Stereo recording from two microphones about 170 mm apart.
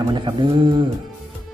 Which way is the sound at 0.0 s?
30° right (ahead or behind).